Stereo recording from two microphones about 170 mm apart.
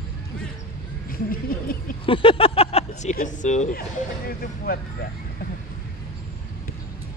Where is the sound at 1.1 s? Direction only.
55° left (ahead or behind).